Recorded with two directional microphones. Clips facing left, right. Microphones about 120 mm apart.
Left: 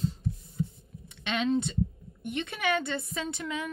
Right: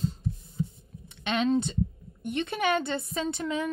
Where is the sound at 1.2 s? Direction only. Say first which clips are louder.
Right 2 dB; 40° right (ahead or behind).